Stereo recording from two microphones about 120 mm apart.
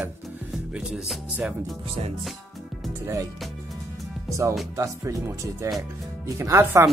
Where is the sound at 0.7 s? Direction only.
5° right (ahead or behind).